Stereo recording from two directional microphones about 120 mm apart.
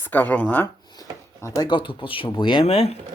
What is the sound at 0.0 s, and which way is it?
Speech, 15° left (ahead or behind).